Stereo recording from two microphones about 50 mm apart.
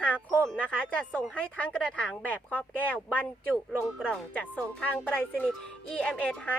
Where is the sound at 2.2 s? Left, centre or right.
Left.